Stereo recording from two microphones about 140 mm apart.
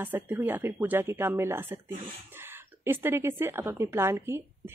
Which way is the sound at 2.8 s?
15° right (ahead or behind).